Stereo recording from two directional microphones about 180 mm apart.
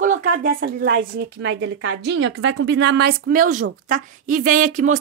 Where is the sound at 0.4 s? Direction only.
50° right (ahead or behind).